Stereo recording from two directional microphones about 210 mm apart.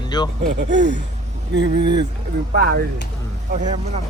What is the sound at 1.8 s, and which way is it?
Speech, 20° right (ahead or behind).